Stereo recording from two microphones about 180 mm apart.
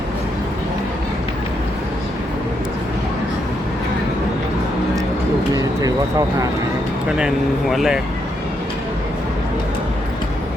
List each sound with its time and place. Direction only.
5.5 s vehicle: 20° right (ahead or behind)
7.2 s speech: centre (ahead or behind)